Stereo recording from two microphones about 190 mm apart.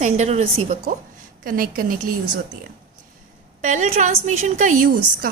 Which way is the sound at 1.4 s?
50° right (ahead or behind).